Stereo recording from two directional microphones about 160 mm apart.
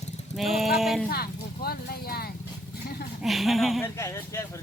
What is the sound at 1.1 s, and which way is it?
Speech, 75° left (ahead or behind).